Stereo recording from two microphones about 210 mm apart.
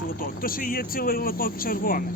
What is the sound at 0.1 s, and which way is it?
Speech, 45° left (ahead or behind).